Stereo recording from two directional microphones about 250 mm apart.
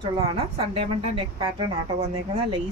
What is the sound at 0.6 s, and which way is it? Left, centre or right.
Speech, right.